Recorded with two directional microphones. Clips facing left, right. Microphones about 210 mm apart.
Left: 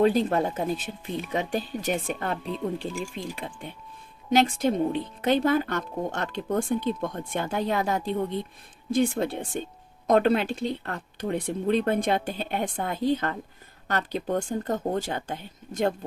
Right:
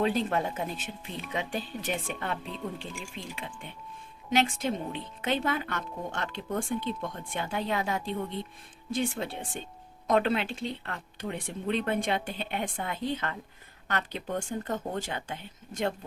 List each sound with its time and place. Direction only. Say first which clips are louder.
0.0 s speech: left 6 dB; 40° left (ahead or behind)